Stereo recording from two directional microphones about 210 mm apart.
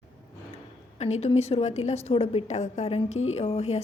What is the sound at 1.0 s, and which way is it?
A woman's voice, 30° left (ahead or behind).